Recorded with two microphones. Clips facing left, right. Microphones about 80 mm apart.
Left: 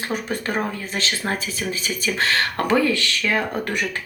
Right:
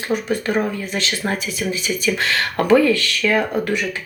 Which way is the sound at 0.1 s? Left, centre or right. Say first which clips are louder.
Right 7 dB; left.